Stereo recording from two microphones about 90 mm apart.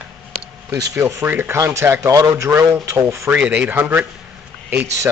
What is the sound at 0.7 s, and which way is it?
Speech, 35° right (ahead or behind).